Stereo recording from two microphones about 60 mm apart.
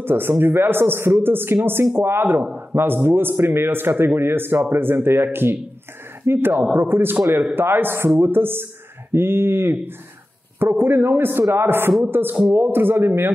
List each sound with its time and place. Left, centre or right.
0.0 s a man's voice: right